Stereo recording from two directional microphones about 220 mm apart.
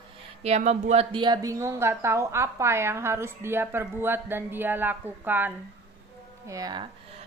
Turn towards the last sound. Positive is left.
turn(degrees=-15)  # may be behind; listen again after turning